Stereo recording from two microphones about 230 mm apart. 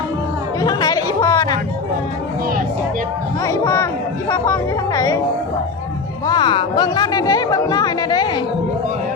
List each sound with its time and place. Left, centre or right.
0.6 s chatter: centre
3.4 s speech: centre
6.2 s speech: centre